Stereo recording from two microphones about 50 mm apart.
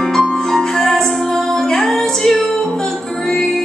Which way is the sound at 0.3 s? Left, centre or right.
Centre.